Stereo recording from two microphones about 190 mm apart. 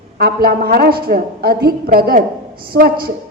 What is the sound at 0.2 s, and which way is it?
A woman's voice, 55° right (ahead or behind).